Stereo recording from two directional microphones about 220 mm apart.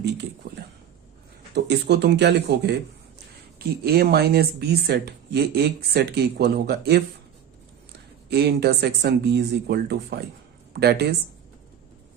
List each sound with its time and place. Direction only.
1.5 s speech: 50° right (ahead or behind)
3.8 s speech: 45° right (ahead or behind)
8.3 s speech: 50° right (ahead or behind)